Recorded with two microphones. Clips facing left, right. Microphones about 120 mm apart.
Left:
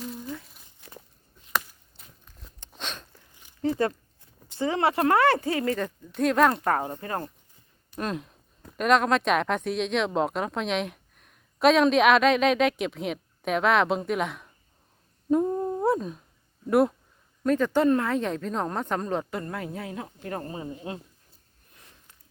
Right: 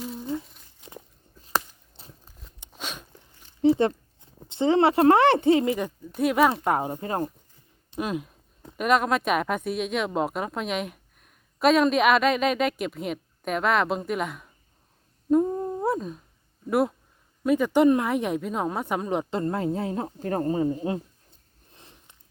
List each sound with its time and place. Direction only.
0.8 s walk: 20° right (ahead or behind)
1.4 s a sound: 35° right (ahead or behind)
2.6 s biting: 5° right (ahead or behind)
4.4 s speech: 25° right (ahead or behind)
6.1 s speech: 5° right (ahead or behind)
6.7 s speech: 20° right (ahead or behind)
7.9 s speech: 5° right (ahead or behind)
15.3 s humming: centre (ahead or behind)
16.6 s speech: centre (ahead or behind)
19.3 s speech: 30° right (ahead or behind)
21.7 s a sound: 25° right (ahead or behind)